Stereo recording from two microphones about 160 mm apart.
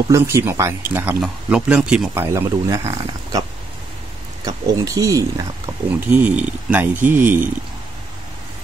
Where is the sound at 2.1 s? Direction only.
20° right (ahead or behind).